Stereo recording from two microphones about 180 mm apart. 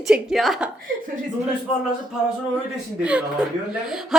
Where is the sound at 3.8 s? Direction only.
Centre (ahead or behind).